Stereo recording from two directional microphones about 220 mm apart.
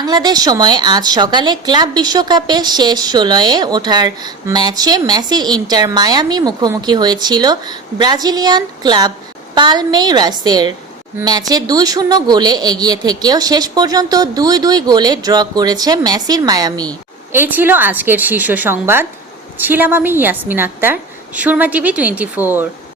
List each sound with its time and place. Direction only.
0.0 s a woman's voice: 20° right (ahead or behind)